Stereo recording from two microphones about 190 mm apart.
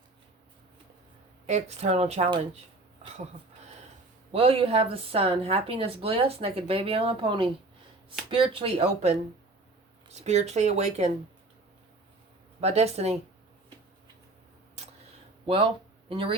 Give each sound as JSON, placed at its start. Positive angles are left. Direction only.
{"t": 1.5, "sound": "speech", "side_deg": -35}
{"t": 4.3, "sound": "speech", "side_deg": -30}
{"t": 10.2, "sound": "speech", "side_deg": -35}
{"t": 12.5, "sound": "speech", "side_deg": -35}
{"t": 15.4, "sound": "speech", "side_deg": -30}